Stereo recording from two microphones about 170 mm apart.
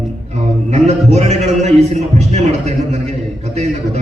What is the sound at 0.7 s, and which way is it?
A man's voice, 40° right (ahead or behind).